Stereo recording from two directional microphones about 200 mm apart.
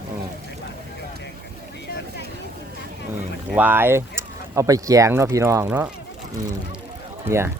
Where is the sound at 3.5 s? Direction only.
10° right (ahead or behind).